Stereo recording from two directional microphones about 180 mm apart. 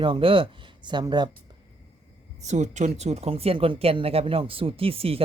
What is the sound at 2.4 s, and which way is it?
Speech, 40° right (ahead or behind).